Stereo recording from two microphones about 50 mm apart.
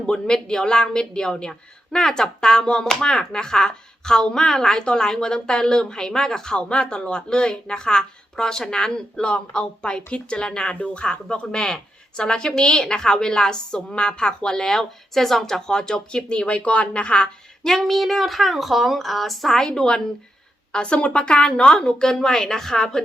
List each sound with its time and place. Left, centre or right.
0.1 s speech: centre